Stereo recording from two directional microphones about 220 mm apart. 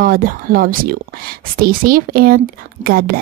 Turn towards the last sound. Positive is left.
turn(degrees=-45)  # may be behind; listen again after turning